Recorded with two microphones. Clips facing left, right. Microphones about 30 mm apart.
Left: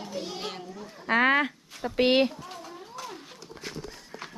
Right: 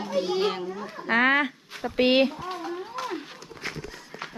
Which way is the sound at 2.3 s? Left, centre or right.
Right.